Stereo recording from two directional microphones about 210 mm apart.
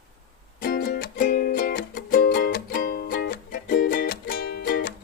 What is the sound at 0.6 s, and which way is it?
Music, 45° left (ahead or behind).